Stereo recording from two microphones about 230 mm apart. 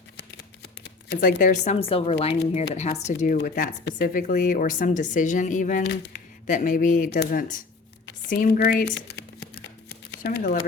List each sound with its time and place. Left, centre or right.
1.1 s a woman's voice: left
9.0 s a sound: left
10.1 s speech: left